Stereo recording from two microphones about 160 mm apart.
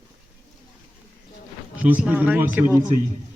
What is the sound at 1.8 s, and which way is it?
Speech, 10° right (ahead or behind).